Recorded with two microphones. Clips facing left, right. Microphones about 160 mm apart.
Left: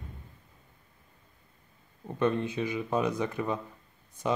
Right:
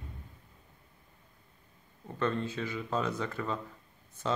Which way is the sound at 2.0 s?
15° left (ahead or behind).